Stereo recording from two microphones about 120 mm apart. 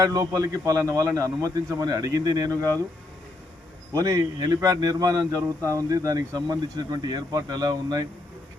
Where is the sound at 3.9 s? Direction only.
25° right (ahead or behind).